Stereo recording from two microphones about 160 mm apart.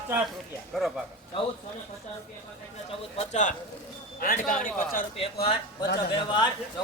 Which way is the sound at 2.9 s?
40° left (ahead or behind).